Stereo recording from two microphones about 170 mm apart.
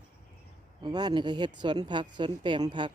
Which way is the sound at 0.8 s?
25° right (ahead or behind).